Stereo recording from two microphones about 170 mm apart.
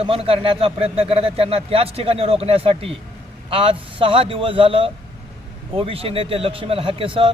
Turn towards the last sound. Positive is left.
turn(degrees=-30)  # may be behind; listen again after turning